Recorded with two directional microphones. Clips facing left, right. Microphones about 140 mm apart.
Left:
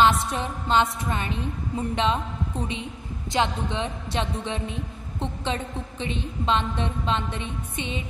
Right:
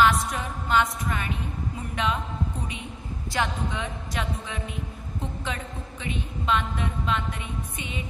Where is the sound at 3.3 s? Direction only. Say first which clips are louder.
Left 3 dB; 25° left (ahead or behind).